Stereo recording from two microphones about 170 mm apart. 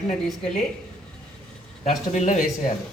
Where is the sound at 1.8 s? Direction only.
45° left (ahead or behind).